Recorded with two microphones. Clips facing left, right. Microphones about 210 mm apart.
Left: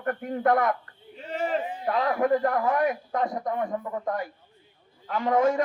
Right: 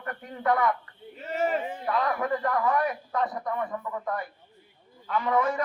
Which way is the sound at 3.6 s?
40° left (ahead or behind).